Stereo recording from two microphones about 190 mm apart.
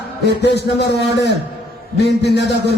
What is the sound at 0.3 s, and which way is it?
A man's voice, 60° left (ahead or behind).